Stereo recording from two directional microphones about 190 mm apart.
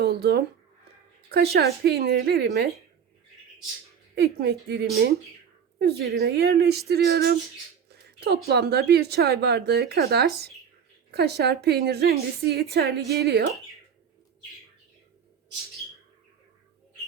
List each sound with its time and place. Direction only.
0.0 s speech: 55° right (ahead or behind)
4.1 s speech: 60° right (ahead or behind)
7.9 s a sound: 60° right (ahead or behind)
8.4 s speech: 60° right (ahead or behind)